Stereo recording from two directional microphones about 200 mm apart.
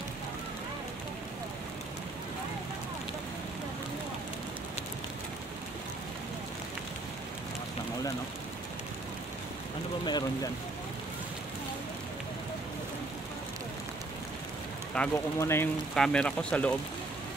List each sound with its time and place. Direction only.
10.0 s speech: 20° left (ahead or behind)
15.0 s speech: 15° left (ahead or behind)